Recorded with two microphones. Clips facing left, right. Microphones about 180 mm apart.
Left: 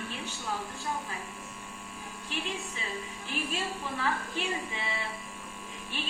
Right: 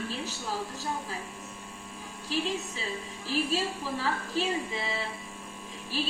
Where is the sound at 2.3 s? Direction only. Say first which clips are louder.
Right 6 dB; 35° right (ahead or behind).